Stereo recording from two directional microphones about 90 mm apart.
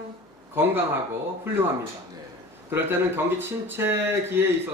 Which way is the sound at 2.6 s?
25° right (ahead or behind).